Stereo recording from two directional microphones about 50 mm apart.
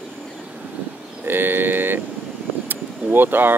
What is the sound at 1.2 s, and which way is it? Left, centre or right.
Speech, right.